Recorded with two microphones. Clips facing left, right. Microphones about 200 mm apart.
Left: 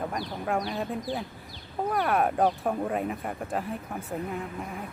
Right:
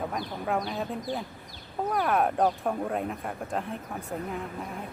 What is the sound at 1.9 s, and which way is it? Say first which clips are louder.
Speech: even; centre (ahead or behind).